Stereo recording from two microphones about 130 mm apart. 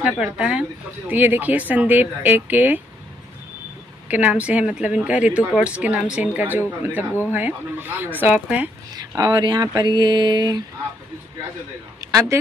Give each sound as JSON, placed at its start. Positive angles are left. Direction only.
{"t": 0.0, "sound": "speech", "side_deg": -10}
{"t": 4.1, "sound": "speech", "side_deg": -10}
{"t": 8.9, "sound": "a sound", "side_deg": -30}
{"t": 12.1, "sound": "speech", "side_deg": -25}